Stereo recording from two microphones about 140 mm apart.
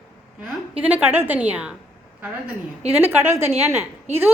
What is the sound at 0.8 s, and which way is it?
Speech, 10° right (ahead or behind).